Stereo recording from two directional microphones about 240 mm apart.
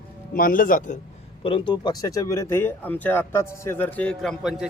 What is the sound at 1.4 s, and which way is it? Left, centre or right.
Speech, left.